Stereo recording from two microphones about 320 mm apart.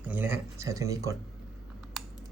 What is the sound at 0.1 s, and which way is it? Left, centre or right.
Speech, centre.